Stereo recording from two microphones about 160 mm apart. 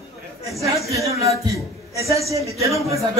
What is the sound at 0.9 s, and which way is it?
Speech, 20° right (ahead or behind).